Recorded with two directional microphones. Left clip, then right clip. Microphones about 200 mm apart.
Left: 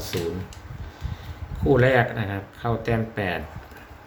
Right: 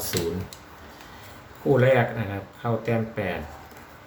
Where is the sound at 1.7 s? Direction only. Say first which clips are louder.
Left 1 dB; 15° left (ahead or behind).